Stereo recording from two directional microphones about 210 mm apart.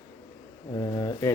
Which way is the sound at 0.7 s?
15° left (ahead or behind).